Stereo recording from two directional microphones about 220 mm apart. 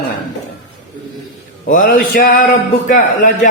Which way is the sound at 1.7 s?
40° left (ahead or behind).